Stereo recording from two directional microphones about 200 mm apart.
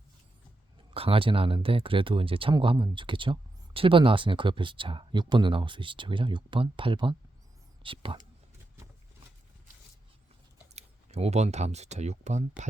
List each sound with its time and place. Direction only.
0.9 s speech: 25° right (ahead or behind)
10.8 s speech: 35° right (ahead or behind)